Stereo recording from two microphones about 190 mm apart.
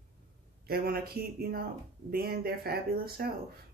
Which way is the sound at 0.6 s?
55° right (ahead or behind).